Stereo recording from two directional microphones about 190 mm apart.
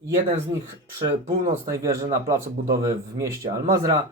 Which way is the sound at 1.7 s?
15° right (ahead or behind).